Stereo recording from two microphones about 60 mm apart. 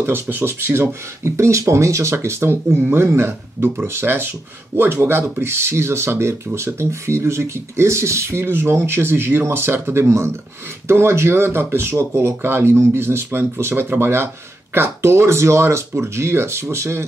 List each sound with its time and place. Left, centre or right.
0.0 s speech: right
2.1 s speech: right